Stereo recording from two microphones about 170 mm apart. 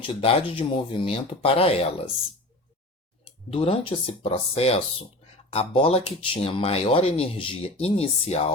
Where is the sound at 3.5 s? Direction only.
35° left (ahead or behind).